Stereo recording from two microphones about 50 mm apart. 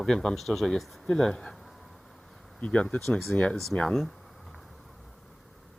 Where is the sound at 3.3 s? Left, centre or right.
Left.